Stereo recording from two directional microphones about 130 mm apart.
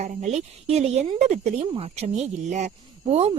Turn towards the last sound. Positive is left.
turn(degrees=-55)  # may be behind; listen again after turning